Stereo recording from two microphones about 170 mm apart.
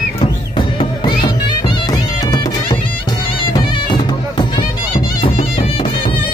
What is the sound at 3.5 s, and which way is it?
Music, 25° left (ahead or behind).